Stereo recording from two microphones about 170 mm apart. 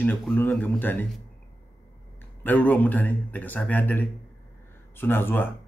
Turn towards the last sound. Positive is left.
turn(degrees=10)  # may be behind; listen again after turning